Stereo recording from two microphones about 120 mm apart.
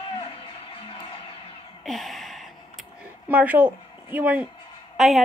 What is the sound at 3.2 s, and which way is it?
A woman's voice, 15° right (ahead or behind).